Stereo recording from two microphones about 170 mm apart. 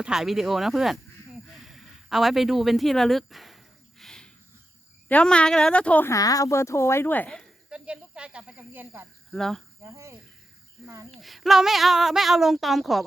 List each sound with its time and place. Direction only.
0.0 s a sound: 5° right (ahead or behind)
5.0 s speech: 5° left (ahead or behind); by 9.0 s 15° right (ahead or behind)
9.3 s speech: centre (ahead or behind)
9.8 s speech: 15° right (ahead or behind)
10.8 s speech: centre (ahead or behind)